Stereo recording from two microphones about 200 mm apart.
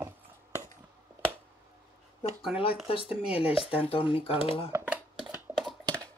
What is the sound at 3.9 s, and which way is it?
Speech, 25° left (ahead or behind).